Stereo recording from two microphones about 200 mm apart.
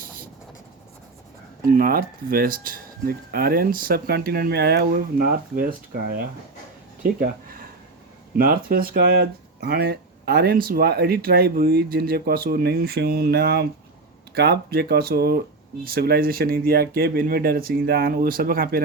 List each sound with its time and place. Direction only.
1.7 s speech: 45° right (ahead or behind)
7.0 s a sound: 45° right (ahead or behind)
8.4 s speech: 45° right (ahead or behind)